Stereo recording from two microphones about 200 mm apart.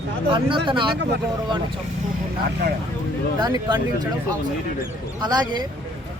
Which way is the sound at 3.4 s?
20° right (ahead or behind).